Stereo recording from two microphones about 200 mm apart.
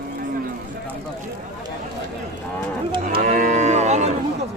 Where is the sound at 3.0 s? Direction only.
40° right (ahead or behind).